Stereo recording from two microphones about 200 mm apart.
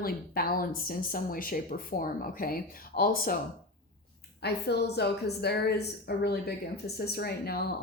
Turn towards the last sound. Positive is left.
turn(degrees=50)  # may be behind; listen again after turning